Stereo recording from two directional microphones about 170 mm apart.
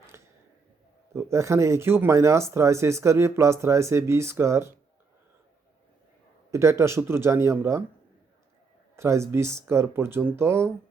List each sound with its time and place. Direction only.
1.1 s speech: 15° right (ahead or behind)
6.5 s speech: 15° right (ahead or behind)
9.0 s speech: 15° right (ahead or behind)